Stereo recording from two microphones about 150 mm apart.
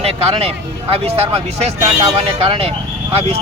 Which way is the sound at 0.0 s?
40° right (ahead or behind).